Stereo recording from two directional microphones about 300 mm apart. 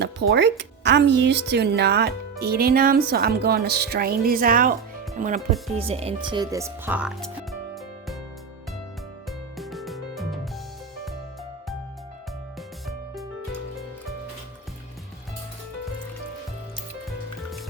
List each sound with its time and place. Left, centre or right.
0.0 s a woman's voice: right; by 7.3 s centre
9.6 s music: centre